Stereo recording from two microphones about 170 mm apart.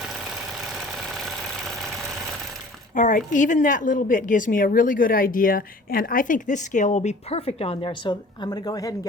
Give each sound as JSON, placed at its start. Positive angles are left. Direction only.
{"t": 2.9, "sound": "a woman's voice", "side_deg": 45}